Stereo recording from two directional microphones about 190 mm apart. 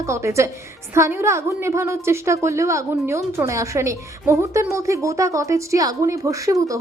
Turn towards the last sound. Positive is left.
turn(degrees=-15)  # may be behind; listen again after turning